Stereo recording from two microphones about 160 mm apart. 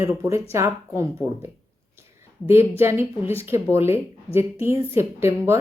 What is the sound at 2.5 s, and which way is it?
Speech, 15° right (ahead or behind).